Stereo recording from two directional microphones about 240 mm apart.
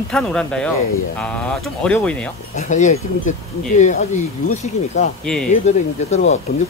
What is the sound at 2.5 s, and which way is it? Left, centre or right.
Speech, left.